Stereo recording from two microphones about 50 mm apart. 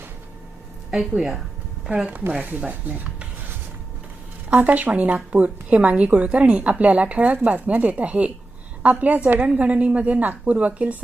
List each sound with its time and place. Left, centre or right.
0.9 s speech: centre
2.6 s a sound: right
4.4 s a woman's voice: right